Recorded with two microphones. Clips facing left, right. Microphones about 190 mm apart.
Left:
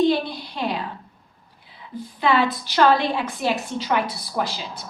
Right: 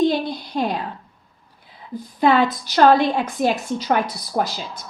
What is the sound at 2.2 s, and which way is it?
A woman's voice, 45° right (ahead or behind).